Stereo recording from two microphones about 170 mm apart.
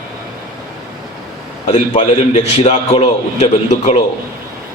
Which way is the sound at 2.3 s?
40° left (ahead or behind).